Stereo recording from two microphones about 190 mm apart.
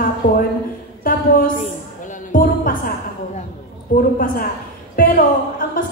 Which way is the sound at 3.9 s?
45° left (ahead or behind).